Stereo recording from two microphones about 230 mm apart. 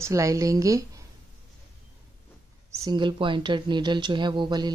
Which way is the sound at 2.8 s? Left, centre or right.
Centre.